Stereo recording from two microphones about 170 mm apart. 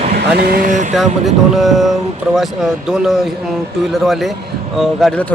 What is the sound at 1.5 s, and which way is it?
Speech, centre (ahead or behind).